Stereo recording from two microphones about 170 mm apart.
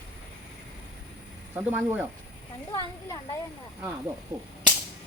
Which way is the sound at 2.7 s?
25° left (ahead or behind).